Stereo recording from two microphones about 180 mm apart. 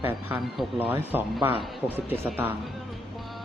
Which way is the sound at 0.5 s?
10° right (ahead or behind).